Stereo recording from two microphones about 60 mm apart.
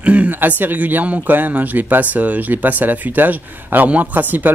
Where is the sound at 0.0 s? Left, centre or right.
Right.